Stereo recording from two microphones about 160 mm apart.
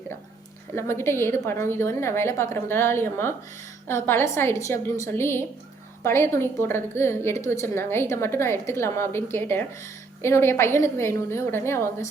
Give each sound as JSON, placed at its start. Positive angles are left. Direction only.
{"t": 0.8, "sound": "a woman's voice", "side_deg": 15}